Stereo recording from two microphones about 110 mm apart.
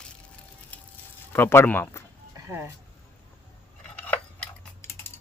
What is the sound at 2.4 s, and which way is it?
Speech, 25° right (ahead or behind).